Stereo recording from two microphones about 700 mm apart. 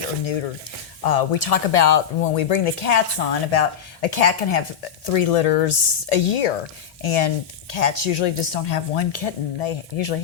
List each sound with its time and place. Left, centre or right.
1.0 s speech: left